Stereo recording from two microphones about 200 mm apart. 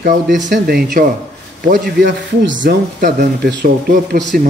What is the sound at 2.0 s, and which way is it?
Speech, 70° right (ahead or behind).